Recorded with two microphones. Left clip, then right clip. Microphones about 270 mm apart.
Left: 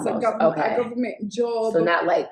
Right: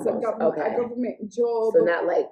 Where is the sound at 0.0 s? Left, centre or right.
Centre.